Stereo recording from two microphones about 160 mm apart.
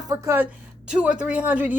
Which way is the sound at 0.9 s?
5° right (ahead or behind).